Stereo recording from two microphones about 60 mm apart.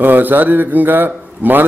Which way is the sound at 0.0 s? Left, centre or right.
Right.